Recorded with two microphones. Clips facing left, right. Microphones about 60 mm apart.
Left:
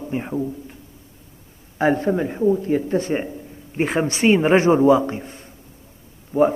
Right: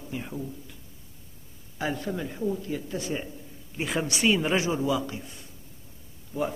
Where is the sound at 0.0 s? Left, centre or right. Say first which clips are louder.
Left 10 dB; left.